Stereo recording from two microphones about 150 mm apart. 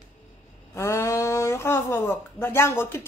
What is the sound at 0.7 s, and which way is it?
Speech, 20° left (ahead or behind).